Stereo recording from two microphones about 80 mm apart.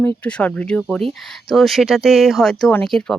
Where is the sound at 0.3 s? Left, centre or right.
Centre.